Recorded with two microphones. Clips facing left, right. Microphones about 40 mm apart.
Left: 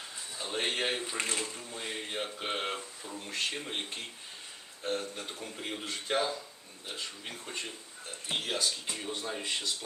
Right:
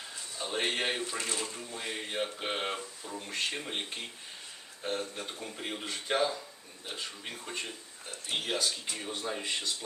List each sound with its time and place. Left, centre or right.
0.3 s a man's voice: centre
1.0 s speech: left
1.5 s speech: centre